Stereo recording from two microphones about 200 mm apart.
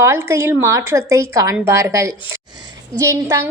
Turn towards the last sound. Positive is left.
turn(degrees=-15)  # may be behind; listen again after turning